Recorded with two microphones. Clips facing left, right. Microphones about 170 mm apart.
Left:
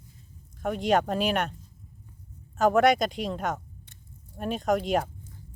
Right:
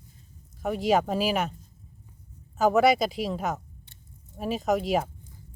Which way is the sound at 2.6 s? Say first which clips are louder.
Even; centre (ahead or behind).